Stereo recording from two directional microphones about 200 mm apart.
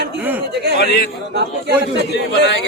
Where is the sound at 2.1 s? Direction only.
55° left (ahead or behind).